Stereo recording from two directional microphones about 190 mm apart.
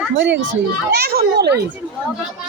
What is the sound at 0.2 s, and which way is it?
Speech, 70° right (ahead or behind).